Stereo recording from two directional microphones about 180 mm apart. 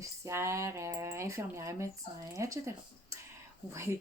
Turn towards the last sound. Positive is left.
turn(degrees=-15)  # may be behind; listen again after turning